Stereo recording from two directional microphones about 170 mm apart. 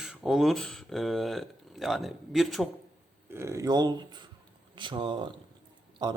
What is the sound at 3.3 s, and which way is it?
A man's voice, 15° right (ahead or behind).